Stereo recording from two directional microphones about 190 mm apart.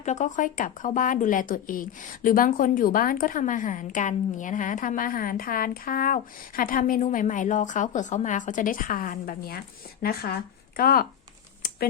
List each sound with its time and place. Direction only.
0.0 s a woman's voice: 40° left (ahead or behind)